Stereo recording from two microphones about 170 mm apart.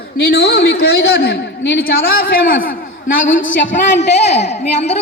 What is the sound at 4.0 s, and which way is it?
Speech, 40° left (ahead or behind).